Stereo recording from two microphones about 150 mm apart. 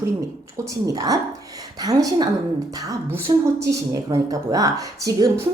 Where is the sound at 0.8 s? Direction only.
25° right (ahead or behind).